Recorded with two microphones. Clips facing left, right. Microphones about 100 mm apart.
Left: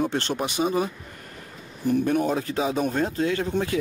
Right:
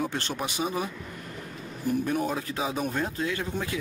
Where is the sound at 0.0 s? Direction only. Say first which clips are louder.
Left 5 dB; 25° left (ahead or behind).